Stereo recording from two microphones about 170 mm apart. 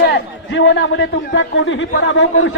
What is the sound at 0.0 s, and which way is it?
A man's voice, 80° left.